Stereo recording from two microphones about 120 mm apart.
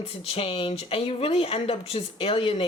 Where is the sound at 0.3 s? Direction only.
55° left (ahead or behind).